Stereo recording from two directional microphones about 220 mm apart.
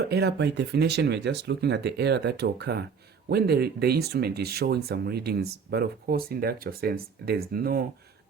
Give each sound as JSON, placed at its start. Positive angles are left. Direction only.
{"t": 0.1, "sound": "speech", "side_deg": -50}